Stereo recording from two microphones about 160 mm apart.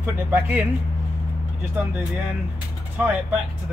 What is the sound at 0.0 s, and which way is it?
Speech, 10° right (ahead or behind).